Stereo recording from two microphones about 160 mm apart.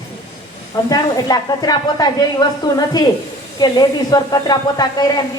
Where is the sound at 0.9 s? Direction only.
25° left (ahead or behind).